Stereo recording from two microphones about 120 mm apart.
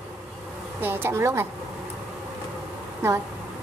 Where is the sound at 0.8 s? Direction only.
20° right (ahead or behind).